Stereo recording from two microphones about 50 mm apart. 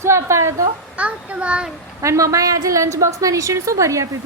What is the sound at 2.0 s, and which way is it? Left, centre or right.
A woman's voice, right.